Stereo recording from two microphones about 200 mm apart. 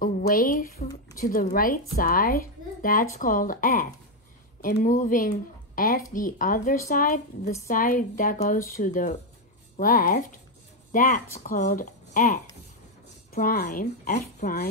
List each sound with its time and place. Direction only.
0.0 s a woman's voice: 45° left (ahead or behind)